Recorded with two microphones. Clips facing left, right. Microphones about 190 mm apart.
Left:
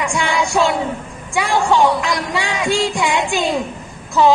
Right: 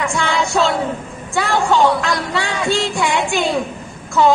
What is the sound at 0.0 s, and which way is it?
Music, 15° left (ahead or behind).